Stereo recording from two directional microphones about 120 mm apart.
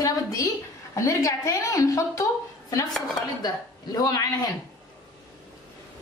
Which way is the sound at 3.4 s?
35° left (ahead or behind).